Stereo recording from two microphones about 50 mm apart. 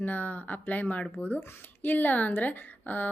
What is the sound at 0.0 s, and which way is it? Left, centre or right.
Speech, left.